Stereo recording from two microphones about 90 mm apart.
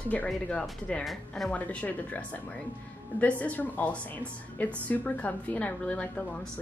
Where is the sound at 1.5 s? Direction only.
15° left (ahead or behind).